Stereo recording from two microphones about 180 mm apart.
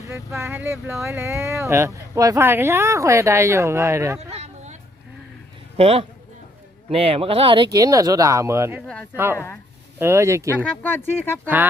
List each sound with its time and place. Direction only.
0.0 s speech: 15° right (ahead or behind)
4.3 s a sound: 40° right (ahead or behind)
5.7 s a man's voice: 35° right (ahead or behind); by 8.8 s 15° right (ahead or behind)
9.3 s speech: 15° left (ahead or behind)
10.0 s speech: 15° right (ahead or behind)
10.5 s speech: 10° left (ahead or behind)
11.4 s speech: 10° right (ahead or behind)